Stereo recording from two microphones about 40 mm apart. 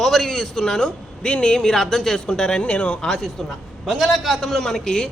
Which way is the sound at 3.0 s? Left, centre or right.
Centre.